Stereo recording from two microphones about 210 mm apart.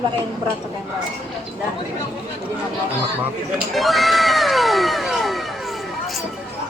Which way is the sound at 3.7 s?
Centre (ahead or behind).